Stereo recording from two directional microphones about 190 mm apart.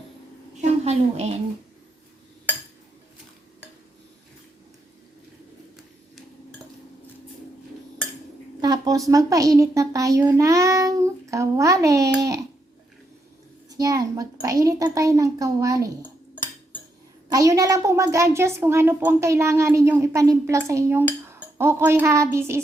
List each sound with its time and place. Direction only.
0.6 s a woman's voice: 35° right (ahead or behind)
8.6 s a sound: 20° right (ahead or behind)
9.0 s a woman's voice: 15° right (ahead or behind)
13.7 s a woman's voice: 20° right (ahead or behind)
17.3 s a woman's voice: 15° right (ahead or behind)